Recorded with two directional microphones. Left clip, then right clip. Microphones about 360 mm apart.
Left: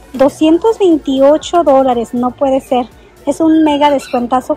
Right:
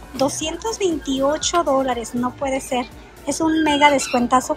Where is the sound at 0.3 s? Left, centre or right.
Centre.